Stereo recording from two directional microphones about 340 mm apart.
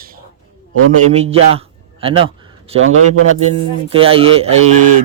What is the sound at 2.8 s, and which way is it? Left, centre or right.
Speech, right.